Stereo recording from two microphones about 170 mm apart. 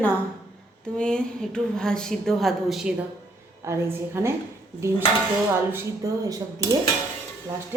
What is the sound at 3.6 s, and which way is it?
Speech, 15° right (ahead or behind).